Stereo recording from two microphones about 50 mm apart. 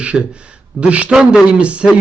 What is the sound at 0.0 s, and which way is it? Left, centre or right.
A man's voice, right.